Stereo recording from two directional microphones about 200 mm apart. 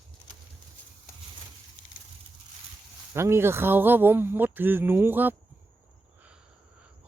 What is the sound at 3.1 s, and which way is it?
Speech, 10° right (ahead or behind).